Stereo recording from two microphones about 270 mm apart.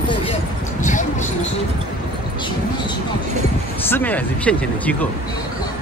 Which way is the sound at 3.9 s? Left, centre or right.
Centre.